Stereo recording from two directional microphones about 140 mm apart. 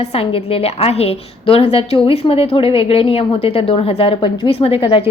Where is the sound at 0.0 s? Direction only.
45° left (ahead or behind).